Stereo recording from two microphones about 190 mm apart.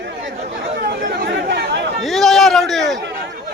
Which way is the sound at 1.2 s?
60° right (ahead or behind).